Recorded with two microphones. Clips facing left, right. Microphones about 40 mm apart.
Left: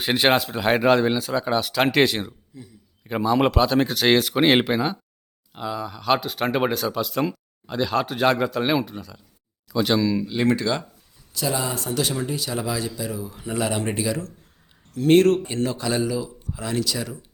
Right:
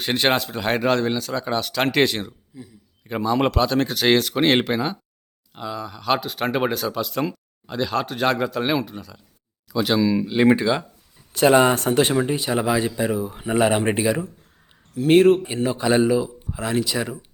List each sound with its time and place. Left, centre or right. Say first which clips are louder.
0.0 s speech: left 1 dB; centre
3.0 s speech: left 1 dB; centre
11.3 s speech: right 11 dB; right
14.9 s speech: right 2 dB; centre; by 17.2 s right